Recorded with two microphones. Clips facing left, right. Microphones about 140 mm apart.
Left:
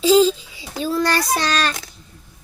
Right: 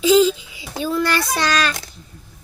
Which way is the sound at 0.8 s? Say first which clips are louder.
Even; 35° left (ahead or behind).